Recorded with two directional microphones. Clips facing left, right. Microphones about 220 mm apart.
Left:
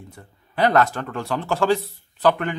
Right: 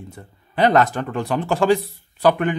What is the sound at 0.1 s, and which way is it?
Speech, 20° right (ahead or behind).